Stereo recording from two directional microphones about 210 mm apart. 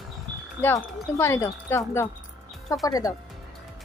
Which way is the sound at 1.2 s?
15° left (ahead or behind).